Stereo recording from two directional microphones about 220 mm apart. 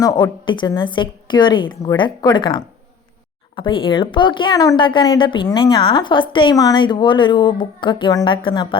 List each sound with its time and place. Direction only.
0.0 s a woman's voice: 20° left (ahead or behind)